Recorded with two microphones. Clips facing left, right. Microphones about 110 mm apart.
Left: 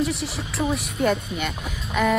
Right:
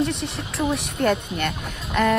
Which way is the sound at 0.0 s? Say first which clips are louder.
Right 1 dB; centre (ahead or behind).